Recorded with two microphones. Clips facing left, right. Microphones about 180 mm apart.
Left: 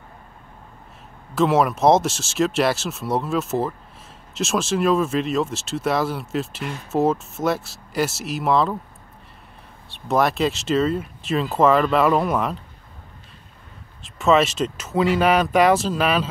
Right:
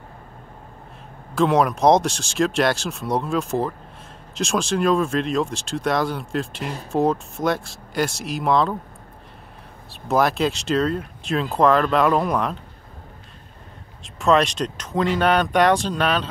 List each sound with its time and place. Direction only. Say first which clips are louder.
1.3 s speech: even; centre (ahead or behind)
6.6 s speech: right 1 dB; 35° right (ahead or behind)
6.9 s speech: even; 5° left (ahead or behind)
9.8 s speech: even; centre (ahead or behind)
14.0 s speech: left 1 dB; centre (ahead or behind)